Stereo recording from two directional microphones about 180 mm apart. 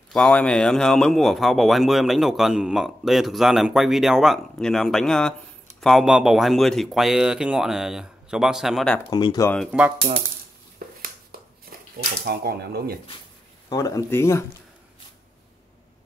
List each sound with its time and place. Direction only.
0.1 s speech: 5° left (ahead or behind)
9.1 s speech: 20° left (ahead or behind)
9.7 s speech: 10° right (ahead or behind)
12.3 s speech: 60° right (ahead or behind)
13.7 s speech: 20° left (ahead or behind)